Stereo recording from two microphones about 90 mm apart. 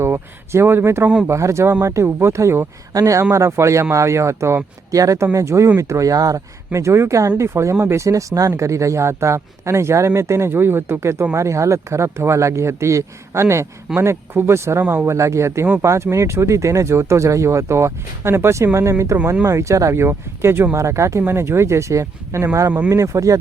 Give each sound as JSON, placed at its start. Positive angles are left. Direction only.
{"t": 0.0, "sound": "speech", "side_deg": -30}
{"t": 19.1, "sound": "speech", "side_deg": -20}
{"t": 19.5, "sound": "speech", "side_deg": -35}